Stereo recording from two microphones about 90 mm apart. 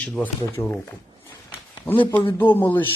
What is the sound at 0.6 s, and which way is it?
Speech, 35° left (ahead or behind).